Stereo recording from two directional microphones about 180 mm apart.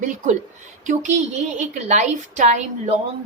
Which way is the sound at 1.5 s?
40° right (ahead or behind).